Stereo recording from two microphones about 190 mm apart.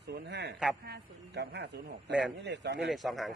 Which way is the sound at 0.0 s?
60° right (ahead or behind).